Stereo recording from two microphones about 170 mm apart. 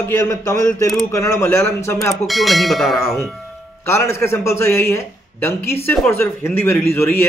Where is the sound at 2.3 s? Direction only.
Centre (ahead or behind).